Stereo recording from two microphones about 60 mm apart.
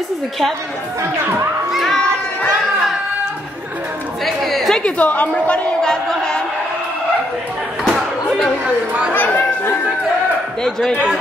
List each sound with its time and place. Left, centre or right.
1.7 s children playing: centre
4.2 s chatter: centre
4.8 s a woman's voice: left
5.8 s crowd: centre
8.6 s speech: centre
9.1 s chatter: left